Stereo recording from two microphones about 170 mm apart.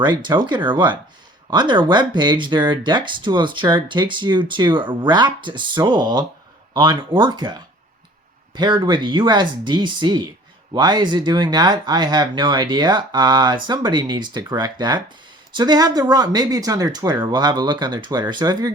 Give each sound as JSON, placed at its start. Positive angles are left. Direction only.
{"t": 0.0, "sound": "speech", "side_deg": -25}